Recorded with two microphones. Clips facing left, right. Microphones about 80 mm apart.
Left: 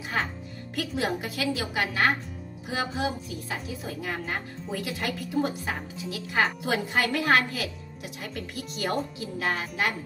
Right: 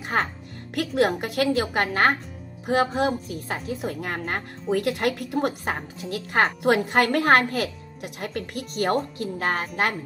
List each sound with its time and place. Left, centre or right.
0.1 s speech: right
0.7 s speech: right
5.8 s speech: right